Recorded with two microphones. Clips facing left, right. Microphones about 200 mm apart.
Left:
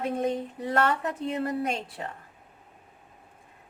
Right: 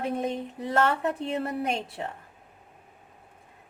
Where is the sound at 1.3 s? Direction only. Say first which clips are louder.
Left 1 dB; 30° right (ahead or behind).